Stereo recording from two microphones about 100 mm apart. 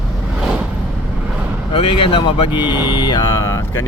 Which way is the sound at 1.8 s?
65° left (ahead or behind).